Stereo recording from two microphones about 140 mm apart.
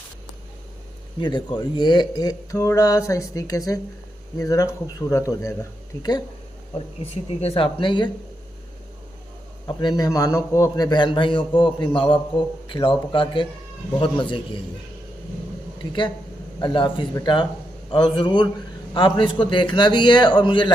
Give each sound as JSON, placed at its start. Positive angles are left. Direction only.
{"t": 1.2, "sound": "a man's voice", "side_deg": 30}
{"t": 6.7, "sound": "speech", "side_deg": 45}
{"t": 9.6, "sound": "a man's voice", "side_deg": 30}
{"t": 15.8, "sound": "a man's voice", "side_deg": 35}